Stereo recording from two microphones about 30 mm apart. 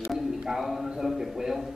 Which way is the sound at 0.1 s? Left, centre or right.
Centre.